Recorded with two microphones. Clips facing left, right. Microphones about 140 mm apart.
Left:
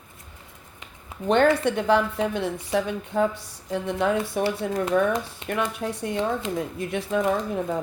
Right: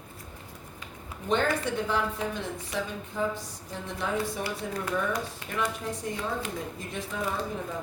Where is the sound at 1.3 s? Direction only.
65° left (ahead or behind).